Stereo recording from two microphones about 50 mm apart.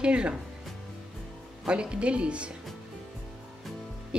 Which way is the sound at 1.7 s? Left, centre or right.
Right.